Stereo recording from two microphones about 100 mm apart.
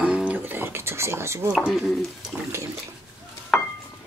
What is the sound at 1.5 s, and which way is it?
Speech, 5° right (ahead or behind).